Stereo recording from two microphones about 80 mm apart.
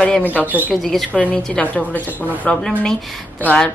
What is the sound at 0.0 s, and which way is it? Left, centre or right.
A woman's voice, centre.